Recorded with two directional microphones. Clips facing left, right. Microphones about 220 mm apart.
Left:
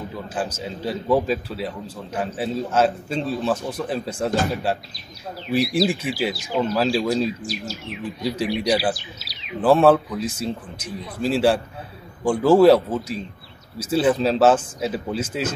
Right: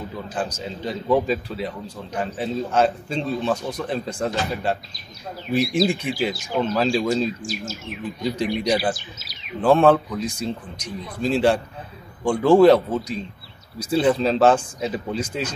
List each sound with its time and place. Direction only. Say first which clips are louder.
0.3 s a man's voice: left 1 dB; 5° left (ahead or behind)
5.5 s a man's voice: even; 5° left (ahead or behind)
8.9 s bird vocalization: left 1 dB; 50° right (ahead or behind)
9.6 s a man's voice: left 1 dB; 5° left (ahead or behind)